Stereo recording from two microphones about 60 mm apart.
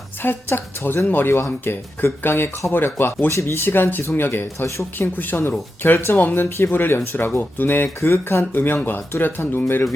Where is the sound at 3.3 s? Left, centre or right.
Left.